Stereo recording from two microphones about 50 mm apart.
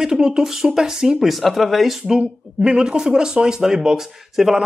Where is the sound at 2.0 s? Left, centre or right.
Centre.